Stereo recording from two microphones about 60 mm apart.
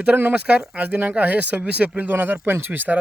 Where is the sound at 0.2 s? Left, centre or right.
Right.